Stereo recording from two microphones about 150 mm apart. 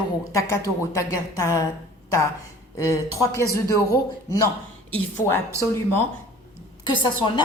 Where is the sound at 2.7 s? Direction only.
20° left (ahead or behind).